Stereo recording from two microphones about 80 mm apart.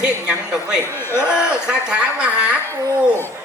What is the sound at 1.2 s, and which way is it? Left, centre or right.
A man's voice, centre.